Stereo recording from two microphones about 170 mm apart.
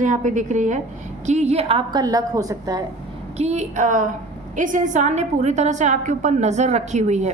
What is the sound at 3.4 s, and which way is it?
A woman's voice, 45° right (ahead or behind).